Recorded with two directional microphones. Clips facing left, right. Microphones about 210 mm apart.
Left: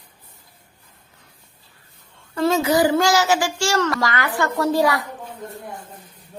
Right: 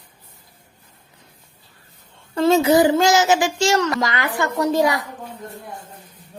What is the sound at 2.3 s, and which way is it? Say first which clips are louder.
A child's voice: right 4 dB; 25° right (ahead or behind).